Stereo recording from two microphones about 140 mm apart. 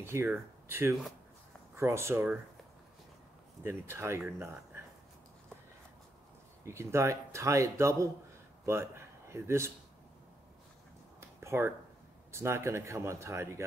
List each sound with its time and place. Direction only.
0.0 s speech: 15° right (ahead or behind)
3.6 s speech: 15° right (ahead or behind)
6.6 s speech: 20° right (ahead or behind)
11.1 s a sound: 20° right (ahead or behind)
12.3 s speech: 20° right (ahead or behind)